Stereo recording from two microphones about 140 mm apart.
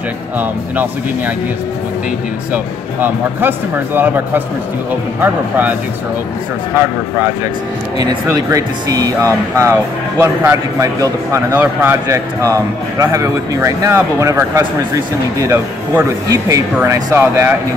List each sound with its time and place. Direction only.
0.4 s speech: 10° right (ahead or behind)
2.5 s speech: 15° right (ahead or behind)
8.3 s speech: 25° right (ahead or behind)